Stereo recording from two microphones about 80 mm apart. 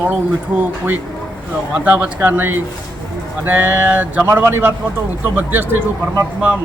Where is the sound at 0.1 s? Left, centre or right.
Right.